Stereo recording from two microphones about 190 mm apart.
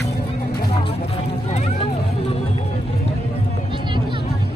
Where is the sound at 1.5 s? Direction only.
35° left (ahead or behind).